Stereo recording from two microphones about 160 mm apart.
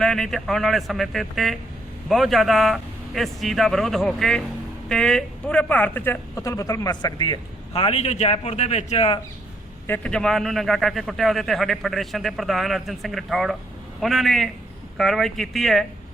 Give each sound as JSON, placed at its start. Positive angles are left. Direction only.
{"t": 0.0, "sound": "a man's voice", "side_deg": 5}
{"t": 9.8, "sound": "a man's voice", "side_deg": 10}